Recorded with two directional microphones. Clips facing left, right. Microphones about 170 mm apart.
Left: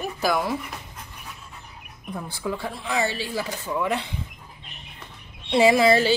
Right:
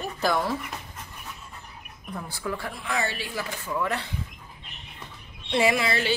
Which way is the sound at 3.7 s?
20° left (ahead or behind).